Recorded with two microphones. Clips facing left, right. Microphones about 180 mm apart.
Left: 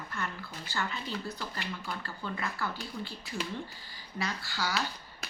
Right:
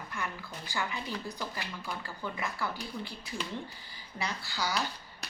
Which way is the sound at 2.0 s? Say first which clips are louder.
Left 1 dB; 15° right (ahead or behind).